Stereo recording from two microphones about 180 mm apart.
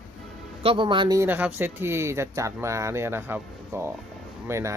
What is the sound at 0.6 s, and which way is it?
Speech, 30° right (ahead or behind).